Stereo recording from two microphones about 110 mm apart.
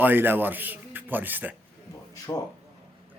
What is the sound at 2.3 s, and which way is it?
Speech, 30° left (ahead or behind).